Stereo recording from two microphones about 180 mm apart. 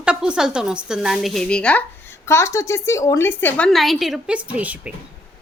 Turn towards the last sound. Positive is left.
turn(degrees=-10)  # may be behind; listen again after turning